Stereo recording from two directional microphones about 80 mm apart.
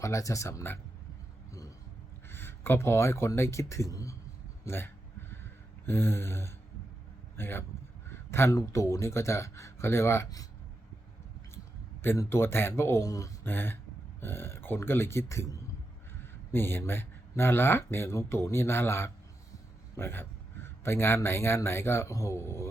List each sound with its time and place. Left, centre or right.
0.0 s speech: left
2.3 s speech: left
4.6 s speech: left
12.1 s speech: left
12.4 s speech: left
13.0 s speech: left
13.4 s speech: left
16.5 s a man's voice: left
20.7 s a sound: left
21.2 s speech: left